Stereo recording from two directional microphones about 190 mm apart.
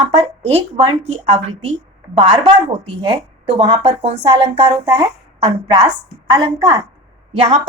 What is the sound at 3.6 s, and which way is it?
Speech, 30° right (ahead or behind).